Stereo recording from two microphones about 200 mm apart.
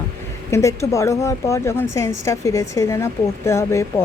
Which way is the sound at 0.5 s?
15° left (ahead or behind).